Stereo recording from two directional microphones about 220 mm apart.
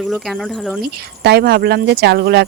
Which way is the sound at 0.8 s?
45° right (ahead or behind).